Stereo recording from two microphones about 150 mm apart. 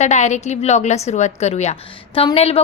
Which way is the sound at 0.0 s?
50° left (ahead or behind).